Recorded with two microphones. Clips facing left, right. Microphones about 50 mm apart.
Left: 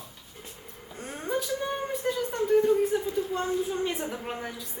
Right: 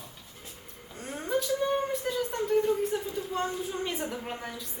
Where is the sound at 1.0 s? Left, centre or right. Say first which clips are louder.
Even; centre.